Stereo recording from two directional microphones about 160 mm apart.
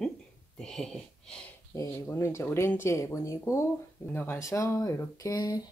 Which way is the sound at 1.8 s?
20° left (ahead or behind).